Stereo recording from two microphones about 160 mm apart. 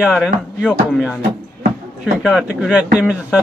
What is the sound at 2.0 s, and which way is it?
A woman's voice, centre (ahead or behind).